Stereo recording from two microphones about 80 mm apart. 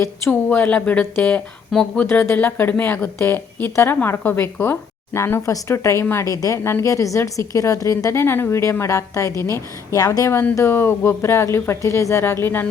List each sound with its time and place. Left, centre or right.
0.3 s a woman's voice: left
6.3 s speech: left
6.7 s a woman's voice: left
9.9 s a woman's voice: left